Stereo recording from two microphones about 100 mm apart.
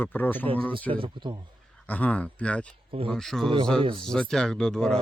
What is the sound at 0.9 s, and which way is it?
Speech, 55° right (ahead or behind).